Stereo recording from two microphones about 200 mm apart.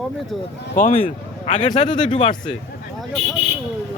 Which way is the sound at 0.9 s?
30° left (ahead or behind).